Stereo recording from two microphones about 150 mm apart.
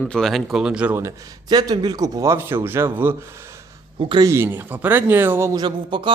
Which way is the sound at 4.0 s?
30° right (ahead or behind).